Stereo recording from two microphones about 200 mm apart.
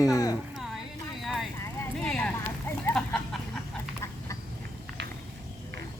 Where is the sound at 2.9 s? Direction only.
5° left (ahead or behind).